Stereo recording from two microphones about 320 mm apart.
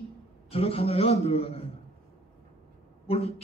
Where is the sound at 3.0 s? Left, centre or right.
Centre.